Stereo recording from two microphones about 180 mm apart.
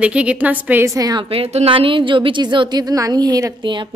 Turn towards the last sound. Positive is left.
turn(degrees=-25)  # may be behind; listen again after turning